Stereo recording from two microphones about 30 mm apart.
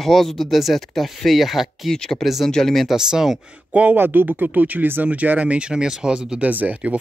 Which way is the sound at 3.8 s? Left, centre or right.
Right.